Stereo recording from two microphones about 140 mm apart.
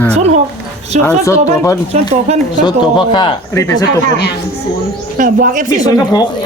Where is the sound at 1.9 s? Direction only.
50° right (ahead or behind).